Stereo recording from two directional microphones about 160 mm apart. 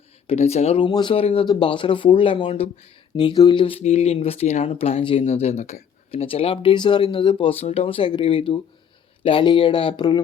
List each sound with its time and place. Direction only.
0.3 s speech: 40° left (ahead or behind)
0.9 s speech: 30° left (ahead or behind)